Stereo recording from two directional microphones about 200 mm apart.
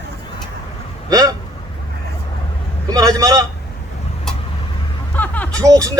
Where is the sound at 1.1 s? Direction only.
20° right (ahead or behind).